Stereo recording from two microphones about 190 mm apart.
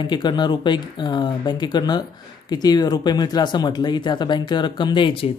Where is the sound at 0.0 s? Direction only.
25° left (ahead or behind).